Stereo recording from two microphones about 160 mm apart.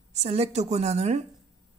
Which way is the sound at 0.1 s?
40° right (ahead or behind).